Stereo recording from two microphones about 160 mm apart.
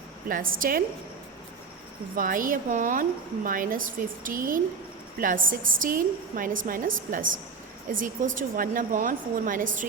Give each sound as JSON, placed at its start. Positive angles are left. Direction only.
{"t": 0.3, "sound": "a woman's voice", "side_deg": -60}
{"t": 2.1, "sound": "a woman's voice", "side_deg": -60}